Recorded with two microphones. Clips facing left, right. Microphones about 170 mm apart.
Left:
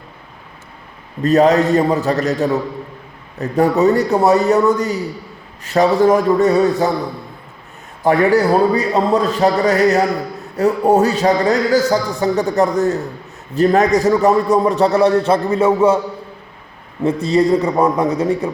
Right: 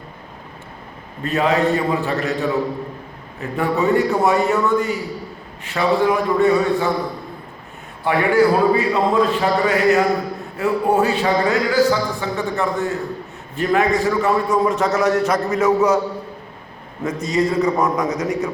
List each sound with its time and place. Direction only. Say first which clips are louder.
1.2 s speech: left 6 dB; 40° left (ahead or behind)
8.0 s speech: left 3 dB; 40° left (ahead or behind)
17.0 s speech: left 5 dB; 30° left (ahead or behind)